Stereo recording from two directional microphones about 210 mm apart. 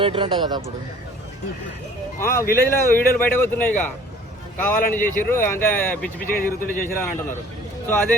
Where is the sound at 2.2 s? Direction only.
10° left (ahead or behind).